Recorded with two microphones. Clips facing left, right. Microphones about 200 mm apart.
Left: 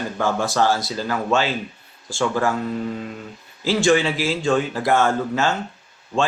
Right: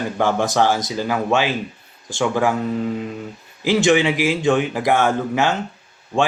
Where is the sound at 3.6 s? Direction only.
20° right (ahead or behind).